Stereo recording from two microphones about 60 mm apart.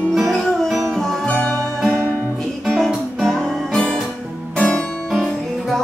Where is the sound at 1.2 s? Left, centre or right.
Left.